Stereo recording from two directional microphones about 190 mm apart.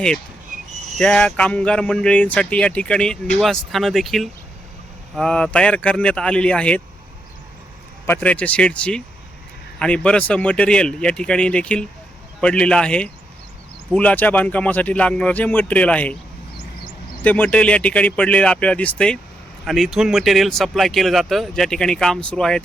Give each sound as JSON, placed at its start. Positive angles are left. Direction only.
{"t": 0.5, "sound": "a sound", "side_deg": -40}
{"t": 0.9, "sound": "speech", "side_deg": 0}
{"t": 8.0, "sound": "speech", "side_deg": 10}
{"t": 17.2, "sound": "speech", "side_deg": 10}